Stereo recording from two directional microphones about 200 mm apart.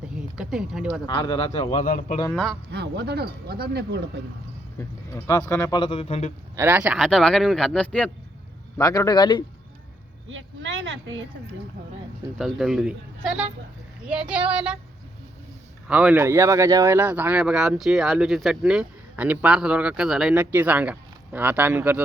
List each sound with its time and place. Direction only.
0.3 s speech: 5° right (ahead or behind)
1.0 s a man's voice: 20° left (ahead or behind); by 2.1 s 40° left (ahead or behind)
2.3 s a man's voice: centre (ahead or behind)
2.6 s speech: 55° right (ahead or behind)
4.8 s speech: 15° left (ahead or behind); by 6.3 s 30° left (ahead or behind)
6.6 s a man's voice: 10° right (ahead or behind)
8.8 s a man's voice: 15° left (ahead or behind)
10.2 s speech: 75° right (ahead or behind)
12.4 s a man's voice: centre (ahead or behind)
15.9 s speech: 5° right (ahead or behind)